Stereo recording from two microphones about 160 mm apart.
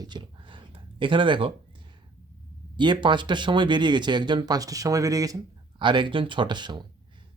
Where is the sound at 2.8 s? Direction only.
30° right (ahead or behind).